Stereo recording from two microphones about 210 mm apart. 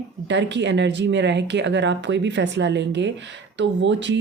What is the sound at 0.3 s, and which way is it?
Speech, 55° right (ahead or behind).